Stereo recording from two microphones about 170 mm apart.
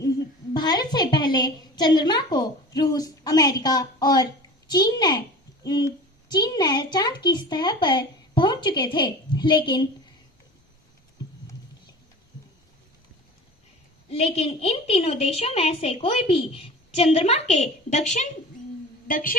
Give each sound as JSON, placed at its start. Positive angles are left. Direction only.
{"t": 0.5, "sound": "a woman's voice", "side_deg": 25}
{"t": 14.1, "sound": "a woman's voice", "side_deg": 35}